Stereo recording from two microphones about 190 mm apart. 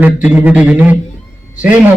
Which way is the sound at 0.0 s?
10° right (ahead or behind).